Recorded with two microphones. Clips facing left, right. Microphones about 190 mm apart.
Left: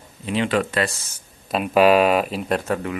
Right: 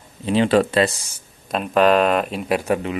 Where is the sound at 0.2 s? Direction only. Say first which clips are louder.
Right 5 dB; 30° right (ahead or behind).